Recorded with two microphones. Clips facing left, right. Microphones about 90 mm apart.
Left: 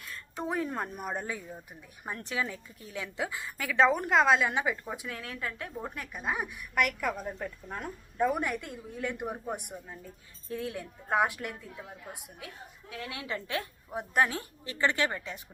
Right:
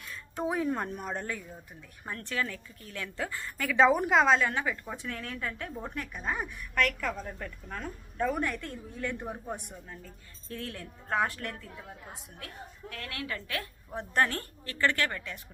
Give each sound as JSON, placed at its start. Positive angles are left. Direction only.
{"t": 0.0, "sound": "a woman's voice", "side_deg": 0}
{"t": 4.4, "sound": "a woman's voice", "side_deg": 15}